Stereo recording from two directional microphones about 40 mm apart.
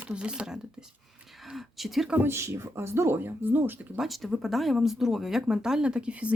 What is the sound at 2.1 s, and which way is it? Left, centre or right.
Speech, right.